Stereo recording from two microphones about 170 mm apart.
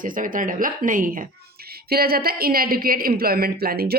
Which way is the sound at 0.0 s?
50° right (ahead or behind).